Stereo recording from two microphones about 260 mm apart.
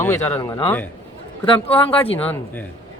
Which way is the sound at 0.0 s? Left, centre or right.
Centre.